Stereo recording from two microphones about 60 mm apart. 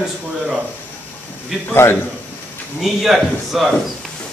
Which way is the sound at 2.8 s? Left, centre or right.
Centre.